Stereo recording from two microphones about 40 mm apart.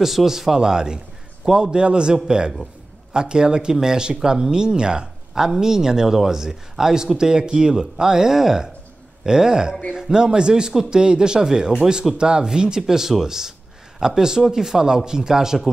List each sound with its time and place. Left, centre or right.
0.0 s speech: centre